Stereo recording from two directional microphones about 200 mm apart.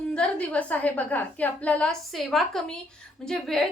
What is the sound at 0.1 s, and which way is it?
A woman's voice, 5° left (ahead or behind).